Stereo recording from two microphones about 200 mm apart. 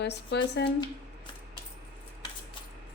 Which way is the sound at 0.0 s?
60° left (ahead or behind).